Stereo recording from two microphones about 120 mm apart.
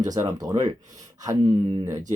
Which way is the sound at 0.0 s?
30° right (ahead or behind).